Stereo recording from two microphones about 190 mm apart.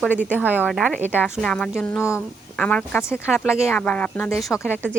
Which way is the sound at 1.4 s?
5° left (ahead or behind).